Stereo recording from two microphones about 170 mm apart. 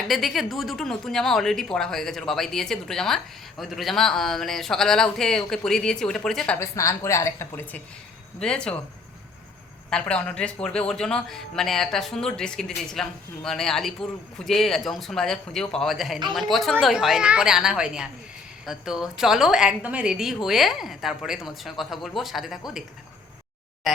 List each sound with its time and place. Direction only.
0.1 s a man's voice: centre (ahead or behind)
6.7 s a woman's voice: 15° left (ahead or behind)
9.9 s a man's voice: 5° left (ahead or behind)
23.9 s a sound: centre (ahead or behind)